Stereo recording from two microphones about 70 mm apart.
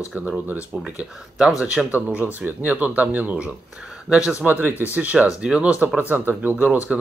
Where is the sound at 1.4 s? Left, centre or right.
Centre.